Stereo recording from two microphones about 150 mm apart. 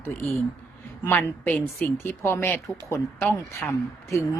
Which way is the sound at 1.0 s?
15° left (ahead or behind).